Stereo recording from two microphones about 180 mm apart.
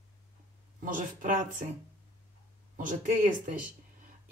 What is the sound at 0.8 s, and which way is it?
Speech, 50° right (ahead or behind).